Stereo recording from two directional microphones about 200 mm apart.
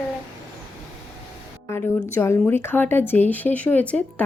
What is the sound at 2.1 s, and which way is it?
A woman's voice, 10° left (ahead or behind).